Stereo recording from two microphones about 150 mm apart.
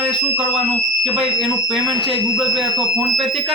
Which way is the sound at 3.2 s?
Centre (ahead or behind).